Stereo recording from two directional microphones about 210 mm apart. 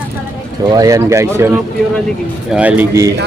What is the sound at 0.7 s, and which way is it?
Speech, 15° right (ahead or behind).